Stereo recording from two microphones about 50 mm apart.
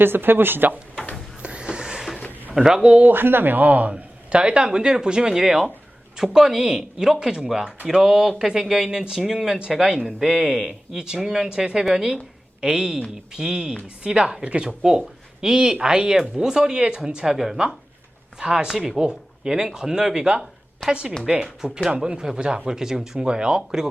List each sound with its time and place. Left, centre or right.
0.0 s speech: right
1.4 s a sound: right
2.6 s speech: centre
3.1 s speech: right
10.2 s speech: centre
20.8 s speech: centre
21.2 s speech: centre